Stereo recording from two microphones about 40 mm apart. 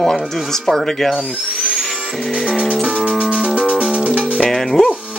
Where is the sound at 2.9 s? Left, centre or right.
Right.